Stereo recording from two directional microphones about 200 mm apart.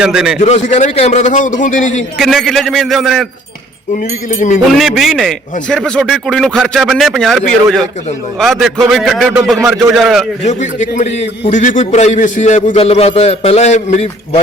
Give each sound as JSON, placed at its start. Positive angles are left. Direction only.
{"t": 0.0, "sound": "speech", "side_deg": -5}
{"t": 0.3, "sound": "a man's voice", "side_deg": 35}
{"t": 2.1, "sound": "speech", "side_deg": 0}
{"t": 4.3, "sound": "a man's voice", "side_deg": 40}
{"t": 4.7, "sound": "speech", "side_deg": 0}
{"t": 10.4, "sound": "a man's voice", "side_deg": 35}